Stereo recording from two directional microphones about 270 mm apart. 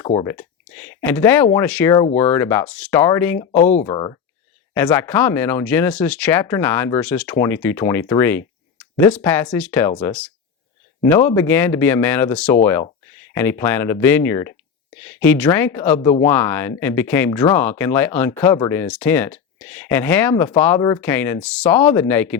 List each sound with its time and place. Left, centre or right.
0.0 s speech: centre
2.0 s speech: left
2.3 s speech: centre
3.6 s speech: left; by 16.0 s centre
16.0 s speech: centre
16.3 s speech: centre